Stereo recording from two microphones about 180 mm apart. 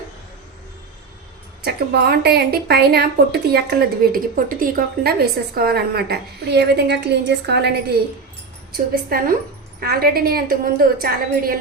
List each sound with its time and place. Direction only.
1.6 s a woman's voice: 60° right (ahead or behind)
8.7 s a woman's voice: 55° right (ahead or behind)